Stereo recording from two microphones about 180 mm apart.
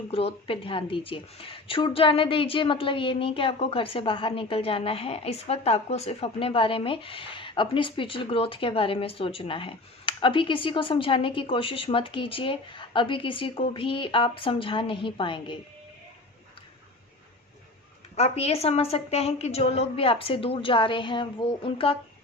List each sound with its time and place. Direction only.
0.1 s a woman's voice: 30° left (ahead or behind)
18.2 s a woman's voice: 35° left (ahead or behind)